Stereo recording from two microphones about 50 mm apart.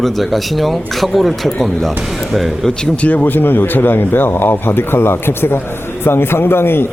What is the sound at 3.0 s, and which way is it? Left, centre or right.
Speech, left.